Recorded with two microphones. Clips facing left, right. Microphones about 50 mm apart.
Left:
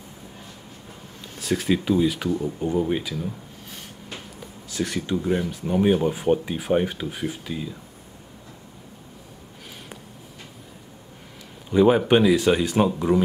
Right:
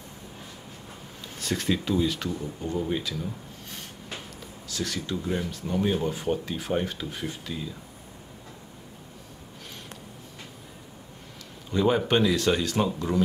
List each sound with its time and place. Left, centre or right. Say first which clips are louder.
1.4 s speech: left 4 dB; centre
4.6 s speech: left 5 dB; left
11.7 s speech: left 6 dB; centre